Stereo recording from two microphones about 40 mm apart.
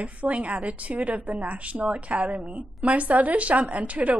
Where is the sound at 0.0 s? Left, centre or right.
Right.